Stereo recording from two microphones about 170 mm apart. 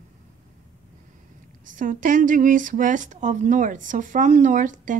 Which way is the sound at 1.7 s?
50° right (ahead or behind).